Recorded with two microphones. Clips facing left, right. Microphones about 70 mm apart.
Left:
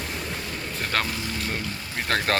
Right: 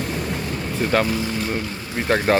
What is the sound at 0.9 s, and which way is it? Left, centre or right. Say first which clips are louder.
Speech: right 7 dB; centre.